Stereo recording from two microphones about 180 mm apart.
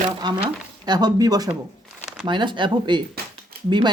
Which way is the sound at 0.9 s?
20° right (ahead or behind).